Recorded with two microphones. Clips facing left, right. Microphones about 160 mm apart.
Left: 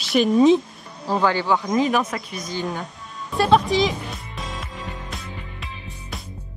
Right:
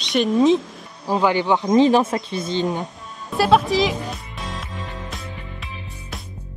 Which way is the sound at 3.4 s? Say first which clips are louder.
Right 1 dB; centre (ahead or behind).